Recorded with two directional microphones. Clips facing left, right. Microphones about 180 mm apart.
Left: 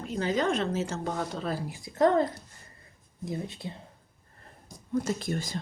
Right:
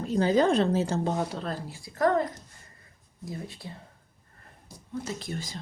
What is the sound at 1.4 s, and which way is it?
Speech, 10° left (ahead or behind).